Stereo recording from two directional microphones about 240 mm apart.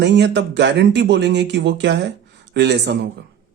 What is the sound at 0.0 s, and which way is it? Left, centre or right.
Speech, right.